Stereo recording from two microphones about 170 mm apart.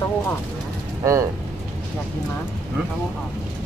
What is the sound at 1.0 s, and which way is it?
Speech, 20° right (ahead or behind).